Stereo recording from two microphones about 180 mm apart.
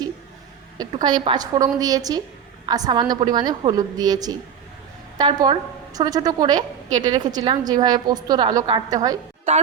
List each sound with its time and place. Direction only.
0.8 s a woman's voice: 25° right (ahead or behind)